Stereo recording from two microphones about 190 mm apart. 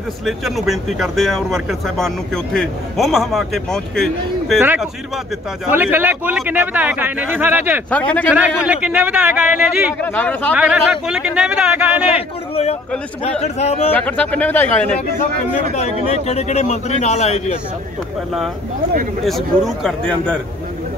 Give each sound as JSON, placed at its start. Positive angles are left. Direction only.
{"t": 0.2, "sound": "speech", "side_deg": 0}
{"t": 4.6, "sound": "a man's voice", "side_deg": -5}
{"t": 7.9, "sound": "speech", "side_deg": 5}
{"t": 8.3, "sound": "a man's voice", "side_deg": -5}
{"t": 10.0, "sound": "speech", "side_deg": 10}
{"t": 10.5, "sound": "speech", "side_deg": -5}
{"t": 12.1, "sound": "speech", "side_deg": 30}
{"t": 13.9, "sound": "speech", "side_deg": 5}
{"t": 15.7, "sound": "speech", "side_deg": 35}
{"t": 19.2, "sound": "speech", "side_deg": 0}